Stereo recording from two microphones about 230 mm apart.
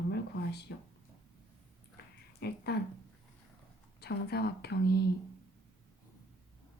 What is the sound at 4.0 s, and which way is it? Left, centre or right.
A woman's voice, left.